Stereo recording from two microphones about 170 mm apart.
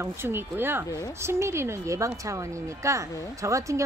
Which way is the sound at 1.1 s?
15° right (ahead or behind).